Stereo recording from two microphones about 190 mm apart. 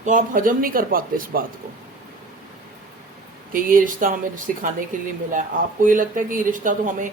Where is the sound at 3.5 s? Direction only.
45° right (ahead or behind).